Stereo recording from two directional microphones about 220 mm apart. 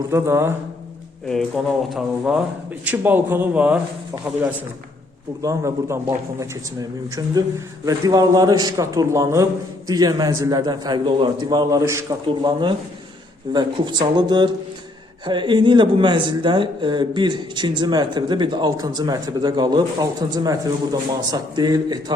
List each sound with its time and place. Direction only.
0.1 s a man's voice: 10° right (ahead or behind)
1.3 s a man's voice: centre (ahead or behind)
7.9 s a man's voice: 15° right (ahead or behind)